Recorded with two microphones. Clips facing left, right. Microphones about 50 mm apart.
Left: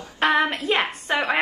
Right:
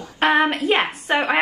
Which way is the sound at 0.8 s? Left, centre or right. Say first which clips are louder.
Right 3 dB; right.